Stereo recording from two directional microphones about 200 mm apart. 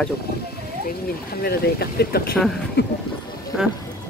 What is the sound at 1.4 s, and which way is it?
Speech, 50° left (ahead or behind).